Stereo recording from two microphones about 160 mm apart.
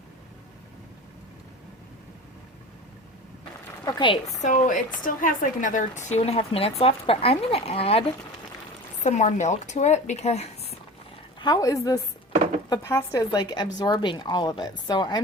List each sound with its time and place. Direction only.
3.8 s speech: 30° left (ahead or behind)
4.4 s a woman's voice: 50° left (ahead or behind)
9.0 s speech: 45° left (ahead or behind)
11.3 s a woman's voice: 25° left (ahead or behind)